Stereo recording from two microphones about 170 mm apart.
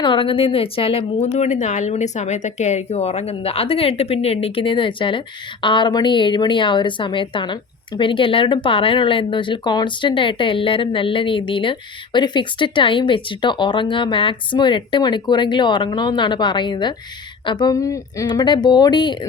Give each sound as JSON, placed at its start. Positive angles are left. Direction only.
{"t": 0.0, "sound": "a woman's voice", "side_deg": 30}